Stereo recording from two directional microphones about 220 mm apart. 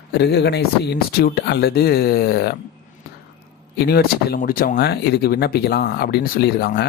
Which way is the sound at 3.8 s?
45° left (ahead or behind).